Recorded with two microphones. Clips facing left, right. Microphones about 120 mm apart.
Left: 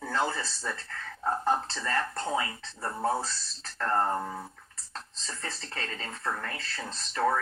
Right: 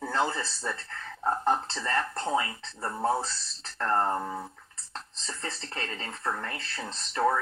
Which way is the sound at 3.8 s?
30° right (ahead or behind).